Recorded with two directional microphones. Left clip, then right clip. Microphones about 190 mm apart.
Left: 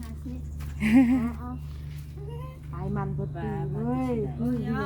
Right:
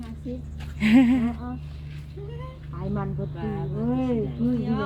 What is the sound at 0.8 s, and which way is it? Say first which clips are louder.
Speech: right 3 dB; 15° left (ahead or behind).